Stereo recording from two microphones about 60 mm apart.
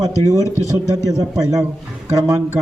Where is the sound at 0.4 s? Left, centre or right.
Left.